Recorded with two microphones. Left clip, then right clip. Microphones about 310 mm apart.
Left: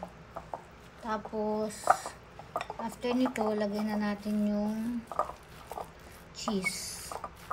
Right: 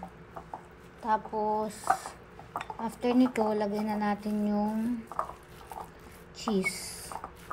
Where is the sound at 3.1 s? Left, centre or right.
Right.